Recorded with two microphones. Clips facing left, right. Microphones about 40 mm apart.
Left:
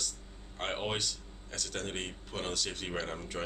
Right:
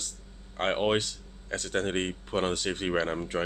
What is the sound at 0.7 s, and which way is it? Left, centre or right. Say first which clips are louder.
Speech: right 9 dB; right.